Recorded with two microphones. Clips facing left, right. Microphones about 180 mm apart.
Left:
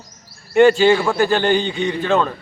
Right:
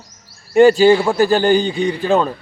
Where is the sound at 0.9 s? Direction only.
20° right (ahead or behind).